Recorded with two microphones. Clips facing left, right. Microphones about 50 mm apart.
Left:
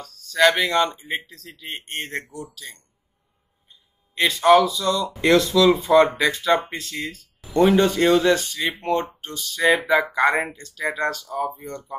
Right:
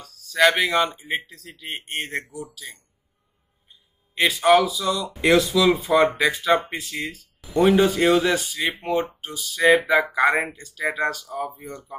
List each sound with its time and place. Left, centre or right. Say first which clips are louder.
0.0 s speech: left 1 dB; centre
4.1 s speech: left 1 dB; centre